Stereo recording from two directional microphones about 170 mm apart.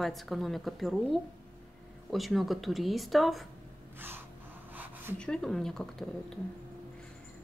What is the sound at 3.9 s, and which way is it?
Snort, 10° right (ahead or behind).